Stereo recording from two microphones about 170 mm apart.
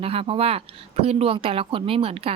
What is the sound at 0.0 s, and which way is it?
Speech, 35° right (ahead or behind).